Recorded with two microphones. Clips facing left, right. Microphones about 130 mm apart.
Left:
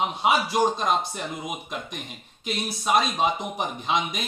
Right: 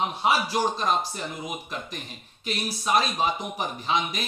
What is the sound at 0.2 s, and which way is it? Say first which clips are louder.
A man's voice: left 3 dB; 20° left (ahead or behind).